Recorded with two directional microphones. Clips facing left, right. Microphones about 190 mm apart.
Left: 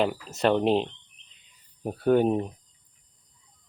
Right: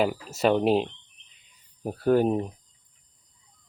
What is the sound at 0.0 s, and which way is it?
Speech, 5° right (ahead or behind).